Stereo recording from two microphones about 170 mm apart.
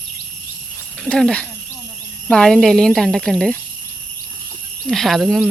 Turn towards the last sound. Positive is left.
turn(degrees=0)  # may be behind; listen again after turning